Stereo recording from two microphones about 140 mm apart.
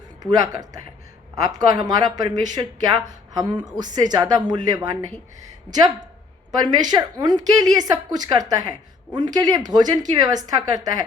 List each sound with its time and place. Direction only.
0.2 s a woman's voice: 30° right (ahead or behind)